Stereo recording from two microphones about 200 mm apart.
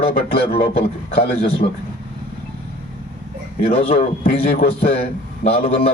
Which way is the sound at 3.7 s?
30° left (ahead or behind).